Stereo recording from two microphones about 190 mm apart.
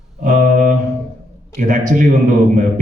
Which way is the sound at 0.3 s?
45° right (ahead or behind).